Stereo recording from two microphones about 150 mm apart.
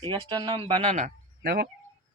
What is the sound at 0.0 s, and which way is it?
Speech, 30° right (ahead or behind).